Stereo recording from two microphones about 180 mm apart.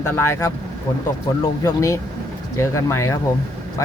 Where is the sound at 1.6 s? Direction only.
15° left (ahead or behind).